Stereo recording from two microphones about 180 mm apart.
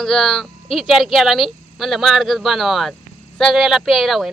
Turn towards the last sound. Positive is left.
turn(degrees=0)  # may be behind; listen again after turning